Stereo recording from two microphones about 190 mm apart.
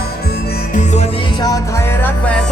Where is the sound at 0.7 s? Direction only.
40° left (ahead or behind).